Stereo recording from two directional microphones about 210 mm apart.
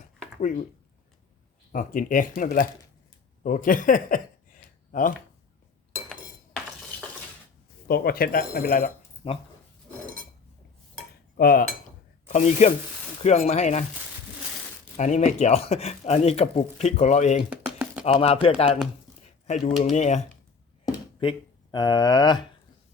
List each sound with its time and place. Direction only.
1.7 s speech: 40° left (ahead or behind)
7.9 s speech: 45° left (ahead or behind)
9.2 s speech: 30° left (ahead or behind)
11.3 s cutlery: 45° left (ahead or behind)
12.3 s speech: 35° left (ahead or behind)
14.9 s speech: 35° left (ahead or behind)
21.2 s speech: 20° left (ahead or behind)